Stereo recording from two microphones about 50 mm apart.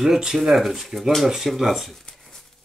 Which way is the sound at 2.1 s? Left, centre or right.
Centre.